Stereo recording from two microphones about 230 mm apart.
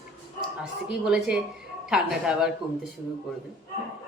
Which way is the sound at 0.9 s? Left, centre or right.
Centre.